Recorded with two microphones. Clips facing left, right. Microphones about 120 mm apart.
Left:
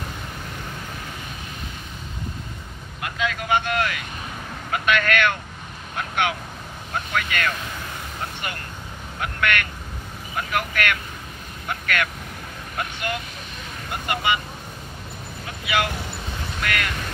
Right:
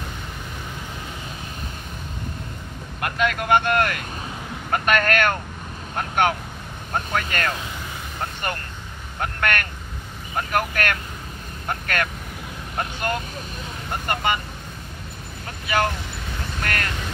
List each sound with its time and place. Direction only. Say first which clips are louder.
3.0 s speech: right 4 dB; 55° right (ahead or behind); by 7.5 s 40° right (ahead or behind)
9.2 s speech: even; 45° right (ahead or behind)
15.6 s speech: right 2 dB; 45° right (ahead or behind)